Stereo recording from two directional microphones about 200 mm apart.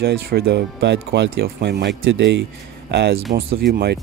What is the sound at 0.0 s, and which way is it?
Speech, 50° right (ahead or behind).